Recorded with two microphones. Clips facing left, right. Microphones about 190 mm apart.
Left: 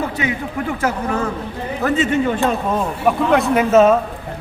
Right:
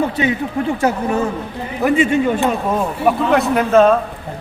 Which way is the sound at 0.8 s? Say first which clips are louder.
Right 2 dB; 20° right (ahead or behind).